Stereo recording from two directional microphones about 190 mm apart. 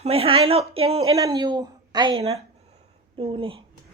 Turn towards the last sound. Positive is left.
turn(degrees=-30)  # may be behind; listen again after turning